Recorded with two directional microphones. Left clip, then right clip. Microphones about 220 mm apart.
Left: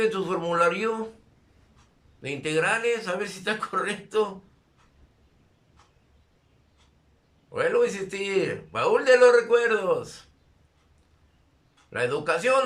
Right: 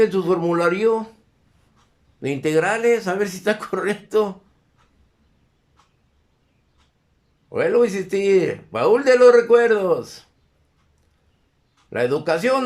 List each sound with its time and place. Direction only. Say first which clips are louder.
0.0 s speech: right 7 dB; 25° right (ahead or behind)
2.2 s speech: right 6 dB; 30° right (ahead or behind)
7.5 s speech: right 5 dB; 25° right (ahead or behind)
11.9 s speech: right 5 dB; 25° right (ahead or behind)